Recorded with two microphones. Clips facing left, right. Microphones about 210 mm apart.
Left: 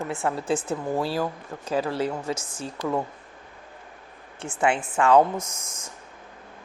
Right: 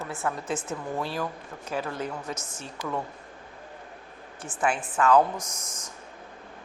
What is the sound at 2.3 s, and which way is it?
Speech, 30° left (ahead or behind).